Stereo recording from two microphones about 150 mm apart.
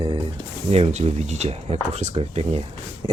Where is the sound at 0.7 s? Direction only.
45° right (ahead or behind).